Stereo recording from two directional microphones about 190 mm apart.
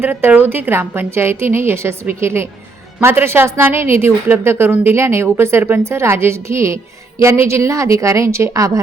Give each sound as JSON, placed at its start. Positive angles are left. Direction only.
{"t": 0.0, "sound": "a woman's voice", "side_deg": -10}